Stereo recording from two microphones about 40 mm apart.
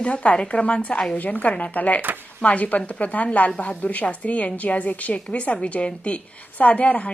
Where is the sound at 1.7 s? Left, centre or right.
Left.